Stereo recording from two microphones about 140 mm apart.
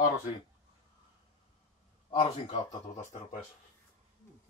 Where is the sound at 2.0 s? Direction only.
45° left (ahead or behind).